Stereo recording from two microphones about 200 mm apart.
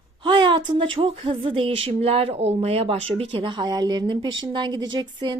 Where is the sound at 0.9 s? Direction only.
25° right (ahead or behind).